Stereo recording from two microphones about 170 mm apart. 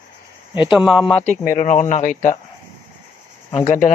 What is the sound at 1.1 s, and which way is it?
Speech, 40° left (ahead or behind).